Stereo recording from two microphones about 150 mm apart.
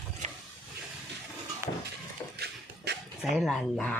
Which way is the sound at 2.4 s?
90° right.